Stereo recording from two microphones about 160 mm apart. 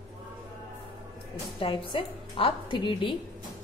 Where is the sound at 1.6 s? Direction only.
35° left (ahead or behind).